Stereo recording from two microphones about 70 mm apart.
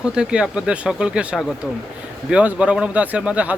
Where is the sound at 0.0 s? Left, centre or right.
Centre.